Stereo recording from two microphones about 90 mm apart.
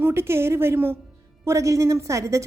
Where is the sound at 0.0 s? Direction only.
30° right (ahead or behind).